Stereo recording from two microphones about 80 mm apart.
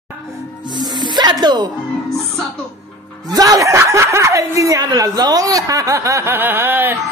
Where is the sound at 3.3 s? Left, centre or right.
Right.